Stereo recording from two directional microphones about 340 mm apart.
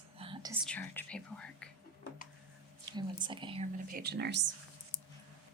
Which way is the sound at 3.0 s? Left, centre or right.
Centre.